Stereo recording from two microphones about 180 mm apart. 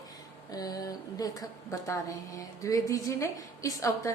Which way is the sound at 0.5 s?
20° left (ahead or behind).